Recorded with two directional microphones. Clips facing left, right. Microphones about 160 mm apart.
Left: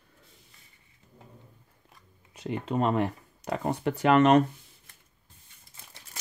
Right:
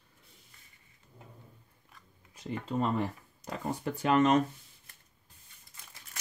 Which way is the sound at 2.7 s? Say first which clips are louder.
Left 5 dB; 75° left (ahead or behind).